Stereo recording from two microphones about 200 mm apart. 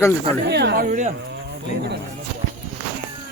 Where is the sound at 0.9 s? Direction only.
40° right (ahead or behind).